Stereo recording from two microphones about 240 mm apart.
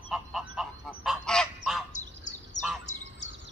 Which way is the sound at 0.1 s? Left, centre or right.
Centre.